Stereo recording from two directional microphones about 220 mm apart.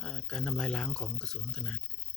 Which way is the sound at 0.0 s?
5° left (ahead or behind).